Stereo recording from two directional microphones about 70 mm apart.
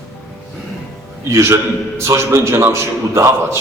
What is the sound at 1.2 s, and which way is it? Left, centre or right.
A man's voice, right.